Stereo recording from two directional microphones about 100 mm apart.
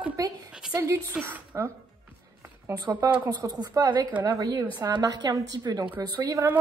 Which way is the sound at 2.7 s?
40° right (ahead or behind).